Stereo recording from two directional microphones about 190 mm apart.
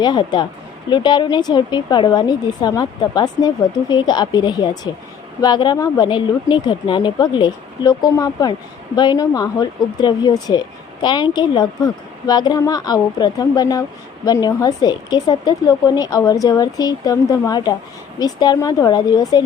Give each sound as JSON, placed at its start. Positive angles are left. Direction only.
{"t": 0.0, "sound": "a woman's voice", "side_deg": 25}